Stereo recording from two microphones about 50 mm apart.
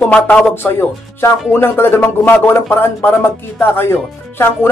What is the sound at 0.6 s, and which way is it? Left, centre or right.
Speech, left.